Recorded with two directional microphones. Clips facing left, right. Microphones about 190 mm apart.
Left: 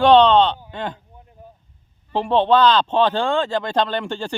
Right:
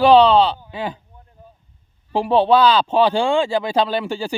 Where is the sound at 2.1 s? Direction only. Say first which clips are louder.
Right 2 dB; 10° right (ahead or behind).